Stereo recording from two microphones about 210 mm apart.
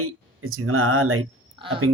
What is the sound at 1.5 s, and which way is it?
Speech, 25° right (ahead or behind).